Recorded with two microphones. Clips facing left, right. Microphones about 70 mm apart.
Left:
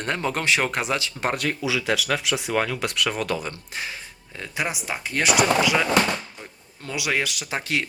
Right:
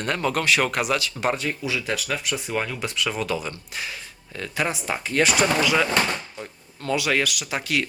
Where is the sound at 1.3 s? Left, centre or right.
Left.